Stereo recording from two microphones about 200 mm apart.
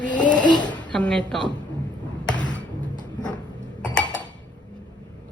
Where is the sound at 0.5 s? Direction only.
20° left (ahead or behind).